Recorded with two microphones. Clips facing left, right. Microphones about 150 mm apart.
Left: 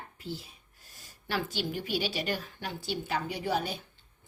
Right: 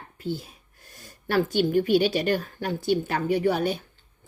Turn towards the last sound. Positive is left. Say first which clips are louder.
# right 9 dB
turn(degrees=-60)  # may be behind; listen again after turning